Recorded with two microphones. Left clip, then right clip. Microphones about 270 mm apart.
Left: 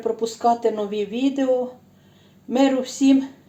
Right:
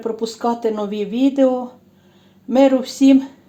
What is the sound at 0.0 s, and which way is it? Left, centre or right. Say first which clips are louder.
Speech: left 1 dB; right.